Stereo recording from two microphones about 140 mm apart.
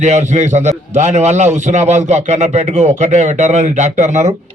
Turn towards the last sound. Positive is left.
turn(degrees=-60)  # may be behind; listen again after turning